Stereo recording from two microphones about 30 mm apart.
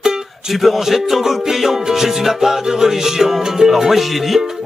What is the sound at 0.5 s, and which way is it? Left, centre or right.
Music, centre.